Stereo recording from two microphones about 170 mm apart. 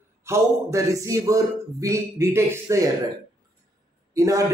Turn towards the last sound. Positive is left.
turn(degrees=-20)  # may be behind; listen again after turning